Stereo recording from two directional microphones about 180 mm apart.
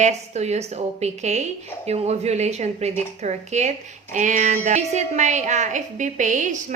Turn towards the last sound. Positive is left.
turn(degrees=-45)  # may be behind; listen again after turning